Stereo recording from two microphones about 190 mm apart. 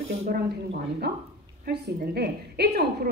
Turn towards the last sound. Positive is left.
turn(degrees=-60)  # may be behind; listen again after turning